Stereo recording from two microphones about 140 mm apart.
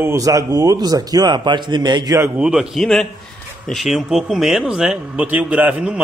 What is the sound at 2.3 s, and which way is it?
A man's voice, 5° right (ahead or behind).